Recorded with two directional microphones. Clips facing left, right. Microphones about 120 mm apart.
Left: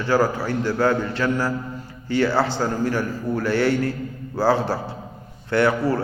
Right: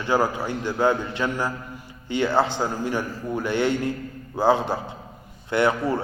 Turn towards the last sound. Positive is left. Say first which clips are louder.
# left 2 dB
turn(degrees=-20)  # may be behind; listen again after turning